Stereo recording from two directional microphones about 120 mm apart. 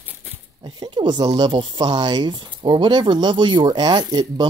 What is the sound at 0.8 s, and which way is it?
Speech, 40° right (ahead or behind).